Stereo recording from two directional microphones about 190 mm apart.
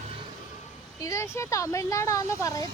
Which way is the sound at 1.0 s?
15° left (ahead or behind).